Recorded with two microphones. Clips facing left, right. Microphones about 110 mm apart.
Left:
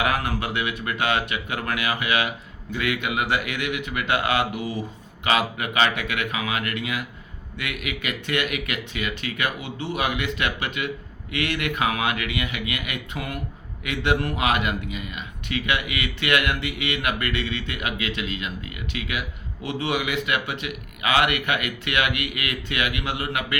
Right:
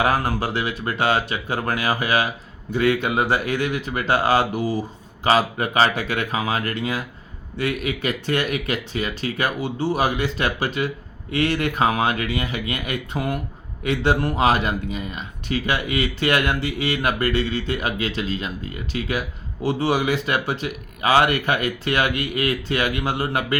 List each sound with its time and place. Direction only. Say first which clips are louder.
0.0 s speech: right 4 dB; 35° right (ahead or behind)